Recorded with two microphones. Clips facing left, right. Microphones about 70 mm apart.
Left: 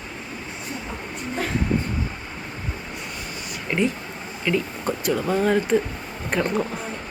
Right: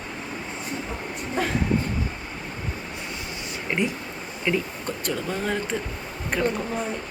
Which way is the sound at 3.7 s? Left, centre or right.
Centre.